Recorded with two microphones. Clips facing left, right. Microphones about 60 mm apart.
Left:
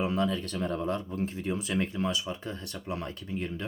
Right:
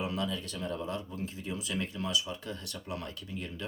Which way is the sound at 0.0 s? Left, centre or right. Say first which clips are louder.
Left 5 dB; left.